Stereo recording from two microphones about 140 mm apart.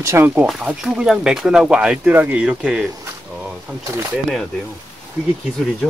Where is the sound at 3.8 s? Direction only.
20° right (ahead or behind).